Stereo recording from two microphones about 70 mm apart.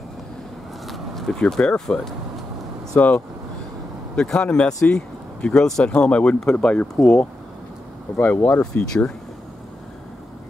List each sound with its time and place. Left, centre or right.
0.8 s a sound: centre
2.9 s speech: left
4.1 s speech: centre
8.2 s speech: left